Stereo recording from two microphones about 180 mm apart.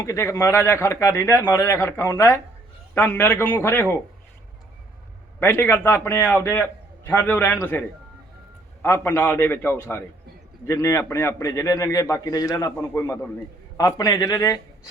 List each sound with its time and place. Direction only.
0.0 s a man's voice: 15° left (ahead or behind)
5.4 s a man's voice: 10° left (ahead or behind)